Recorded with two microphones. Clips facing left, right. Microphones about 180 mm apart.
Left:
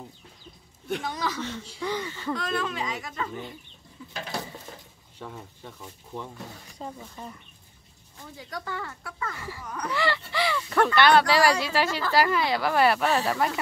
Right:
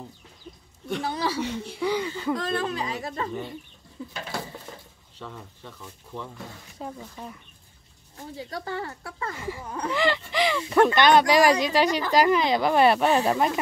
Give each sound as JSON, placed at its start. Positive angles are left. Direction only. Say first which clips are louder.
{"t": 1.0, "sound": "speech", "louder": "right 3 dB", "side_deg": -30}
{"t": 1.8, "sound": "speech", "louder": "right 5 dB", "side_deg": -10}
{"t": 2.3, "sound": "speech", "louder": "even", "side_deg": -35}
{"t": 4.1, "sound": "dishes", "louder": "left 1 dB", "side_deg": 20}
{"t": 7.0, "sound": "speech", "louder": "right 1 dB", "side_deg": 0}
{"t": 8.4, "sound": "speech", "louder": "right 3 dB", "side_deg": -30}